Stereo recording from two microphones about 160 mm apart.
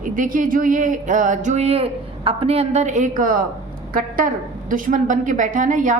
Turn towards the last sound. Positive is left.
turn(degrees=-55)  # may be behind; listen again after turning